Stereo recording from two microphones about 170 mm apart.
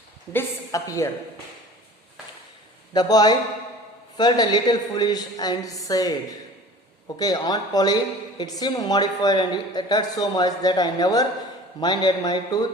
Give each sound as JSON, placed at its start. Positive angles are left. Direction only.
{"t": 0.3, "sound": "a woman's voice", "side_deg": 20}
{"t": 2.9, "sound": "a woman's voice", "side_deg": 25}
{"t": 7.2, "sound": "a woman's voice", "side_deg": 20}